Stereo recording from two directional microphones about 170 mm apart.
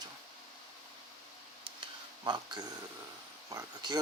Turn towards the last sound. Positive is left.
turn(degrees=-25)  # may be behind; listen again after turning